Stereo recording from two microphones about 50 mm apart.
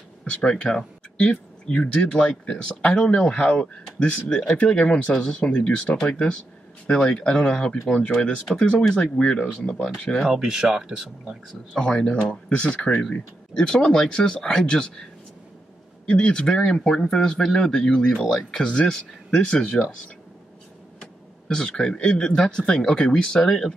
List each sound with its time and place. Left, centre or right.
0.2 s speech: left
10.3 s speech: centre
11.8 s speech: centre
13.6 s speech: centre
16.1 s speech: left
21.0 s speech: centre